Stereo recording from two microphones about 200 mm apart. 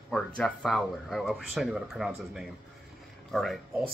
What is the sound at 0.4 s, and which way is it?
Speech, 5° left (ahead or behind).